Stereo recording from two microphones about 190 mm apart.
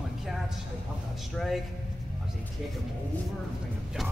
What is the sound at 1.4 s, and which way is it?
Speech, 5° left (ahead or behind).